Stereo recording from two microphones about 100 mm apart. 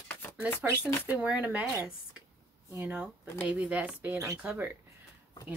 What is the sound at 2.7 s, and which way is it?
Speech, 15° right (ahead or behind).